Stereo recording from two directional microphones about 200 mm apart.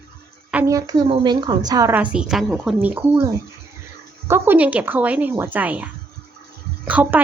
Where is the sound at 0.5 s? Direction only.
15° right (ahead or behind).